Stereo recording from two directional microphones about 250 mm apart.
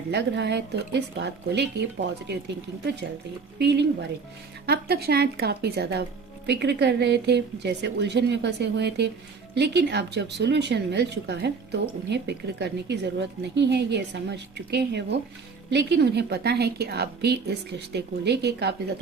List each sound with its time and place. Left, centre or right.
0.1 s speech: right
3.6 s a woman's voice: right